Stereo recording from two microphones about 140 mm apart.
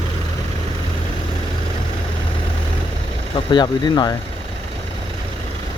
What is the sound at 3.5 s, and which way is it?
Speech, 30° left (ahead or behind).